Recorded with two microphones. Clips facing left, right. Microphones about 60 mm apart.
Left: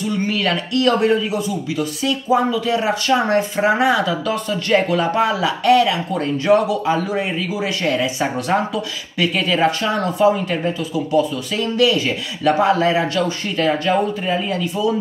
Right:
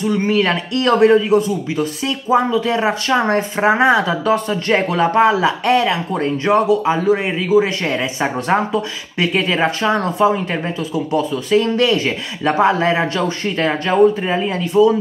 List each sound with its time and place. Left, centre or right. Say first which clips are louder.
0.0 s speech: right 4 dB; right
11.5 s speech: right 3 dB; right